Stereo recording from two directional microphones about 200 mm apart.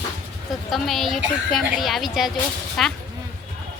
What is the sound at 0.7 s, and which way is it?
A woman's voice, centre (ahead or behind).